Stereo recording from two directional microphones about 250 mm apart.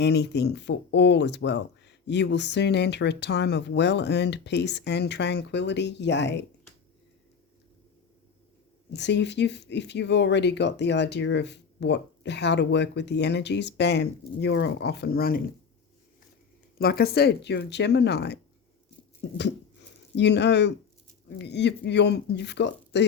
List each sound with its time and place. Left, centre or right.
0.0 s speech: left
8.9 s speech: left
16.7 s speech: left
20.1 s speech: left